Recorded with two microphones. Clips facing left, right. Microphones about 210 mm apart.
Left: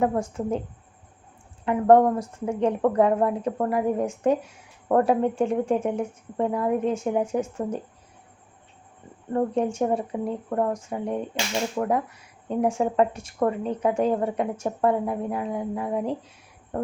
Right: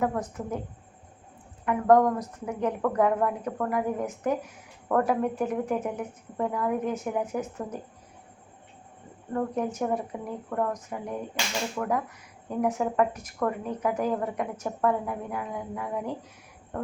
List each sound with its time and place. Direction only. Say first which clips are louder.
0.0 s a woman's voice: left 4 dB; 30° left (ahead or behind)
1.6 s a woman's voice: left 3 dB; 30° left (ahead or behind)
9.3 s a woman's voice: left 5 dB; 30° left (ahead or behind)
16.7 s music: left 5 dB; 30° left (ahead or behind)